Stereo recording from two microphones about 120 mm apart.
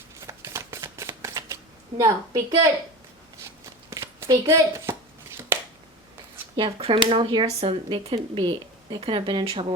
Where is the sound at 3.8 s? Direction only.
25° right (ahead or behind).